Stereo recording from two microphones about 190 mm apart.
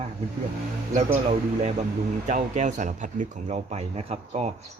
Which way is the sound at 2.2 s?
40° right (ahead or behind).